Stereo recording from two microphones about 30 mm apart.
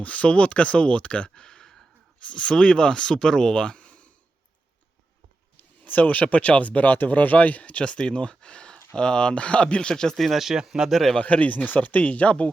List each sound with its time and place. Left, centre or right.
0.0 s speech: left
1.5 s a sound: left
2.2 s speech: left
5.5 s a sound: left
6.2 s speech: left
6.8 s speech: left
7.9 s speech: left
9.3 s speech: left
9.9 s speech: left
10.2 s speech: centre
10.8 s speech: centre
11.2 s speech: left